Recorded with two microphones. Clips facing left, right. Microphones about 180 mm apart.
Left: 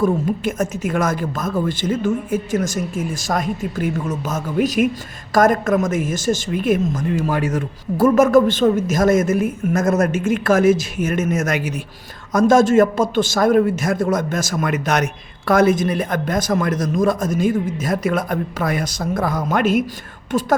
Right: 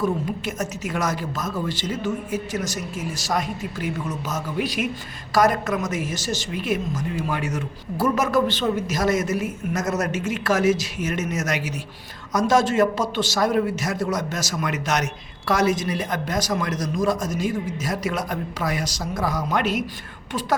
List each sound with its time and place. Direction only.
0.0 s a man's voice: 50° left (ahead or behind)